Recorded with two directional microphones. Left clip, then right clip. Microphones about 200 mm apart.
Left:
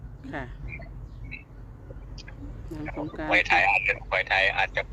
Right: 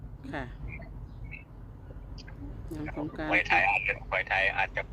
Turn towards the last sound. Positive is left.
turn(degrees=20)  # may be behind; listen again after turning